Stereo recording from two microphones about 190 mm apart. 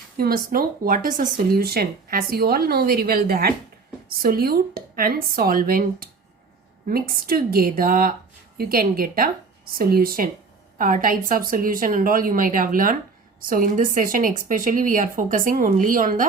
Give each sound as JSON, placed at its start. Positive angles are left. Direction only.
{"t": 0.2, "sound": "speech", "side_deg": -50}